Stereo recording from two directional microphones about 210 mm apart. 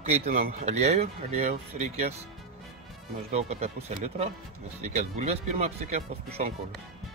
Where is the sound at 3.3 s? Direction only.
30° right (ahead or behind).